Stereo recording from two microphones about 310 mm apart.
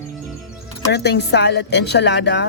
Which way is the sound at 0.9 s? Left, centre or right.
Left.